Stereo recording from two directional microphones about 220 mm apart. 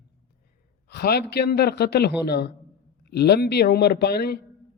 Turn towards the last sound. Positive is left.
turn(degrees=45)  # may be behind; listen again after turning